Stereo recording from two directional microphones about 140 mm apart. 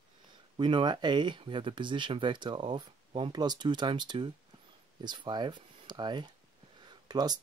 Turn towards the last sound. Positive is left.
turn(degrees=-30)  # may be behind; listen again after turning